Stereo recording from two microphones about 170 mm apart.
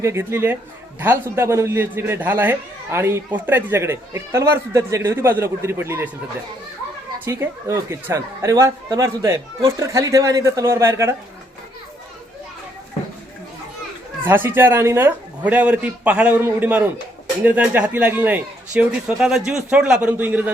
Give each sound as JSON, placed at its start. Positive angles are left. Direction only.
{"t": 0.0, "sound": "a man's voice", "side_deg": -15}
{"t": 7.3, "sound": "a man's voice", "side_deg": -15}
{"t": 9.6, "sound": "speech", "side_deg": -30}
{"t": 9.8, "sound": "a man's voice", "side_deg": -20}
{"t": 14.3, "sound": "a man's voice", "side_deg": -10}